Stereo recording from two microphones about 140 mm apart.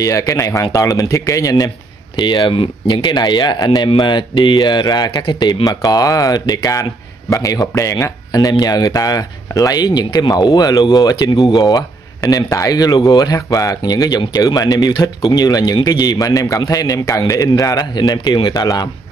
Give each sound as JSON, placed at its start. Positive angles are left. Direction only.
{"t": 0.0, "sound": "speech", "side_deg": 25}